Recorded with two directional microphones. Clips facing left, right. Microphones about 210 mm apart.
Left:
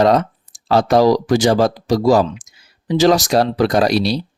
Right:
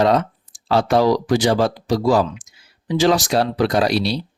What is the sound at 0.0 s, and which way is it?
Speech, 40° left (ahead or behind).